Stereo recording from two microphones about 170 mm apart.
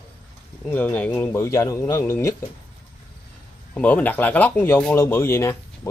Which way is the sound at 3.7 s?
10° left (ahead or behind).